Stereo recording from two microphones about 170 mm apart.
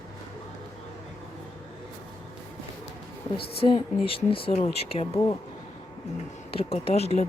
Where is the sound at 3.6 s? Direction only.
30° left (ahead or behind).